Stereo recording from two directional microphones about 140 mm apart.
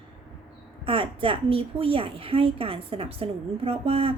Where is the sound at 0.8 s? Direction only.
40° right (ahead or behind).